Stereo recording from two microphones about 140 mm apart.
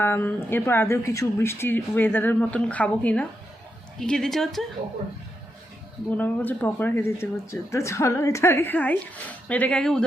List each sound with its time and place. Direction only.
0.0 s a woman's voice: 15° left (ahead or behind)
6.1 s speech: 10° left (ahead or behind)